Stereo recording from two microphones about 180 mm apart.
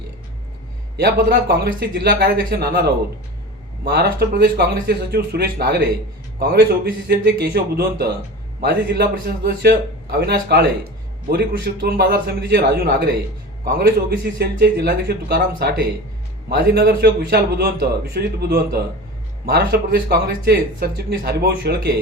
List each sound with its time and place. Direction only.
0.9 s a man's voice: 60° right (ahead or behind)
3.8 s a man's voice: 60° right (ahead or behind)